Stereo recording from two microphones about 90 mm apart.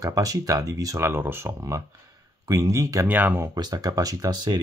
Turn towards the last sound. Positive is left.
turn(degrees=-50)  # may be behind; listen again after turning